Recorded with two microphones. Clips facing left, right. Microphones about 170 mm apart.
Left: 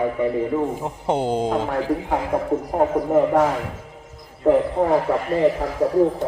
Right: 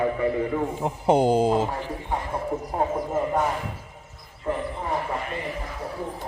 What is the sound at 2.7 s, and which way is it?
Speech, 55° left (ahead or behind).